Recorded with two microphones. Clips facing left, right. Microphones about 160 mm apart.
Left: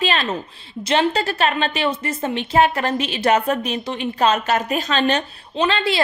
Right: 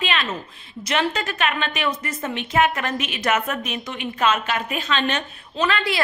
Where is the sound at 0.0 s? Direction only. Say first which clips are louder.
Left 4 dB; 35° left (ahead or behind).